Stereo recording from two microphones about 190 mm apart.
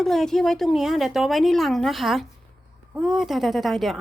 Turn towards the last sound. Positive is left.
turn(degrees=0)  # may be behind; listen again after turning